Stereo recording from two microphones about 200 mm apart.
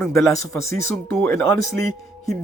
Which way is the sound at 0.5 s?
15° left (ahead or behind).